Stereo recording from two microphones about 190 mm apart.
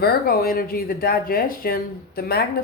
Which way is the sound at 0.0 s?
55° left (ahead or behind).